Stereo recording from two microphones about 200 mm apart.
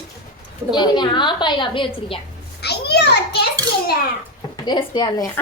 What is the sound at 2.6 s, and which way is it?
Speech, 55° left (ahead or behind).